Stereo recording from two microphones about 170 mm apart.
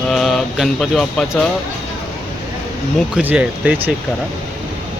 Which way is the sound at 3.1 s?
10° right (ahead or behind).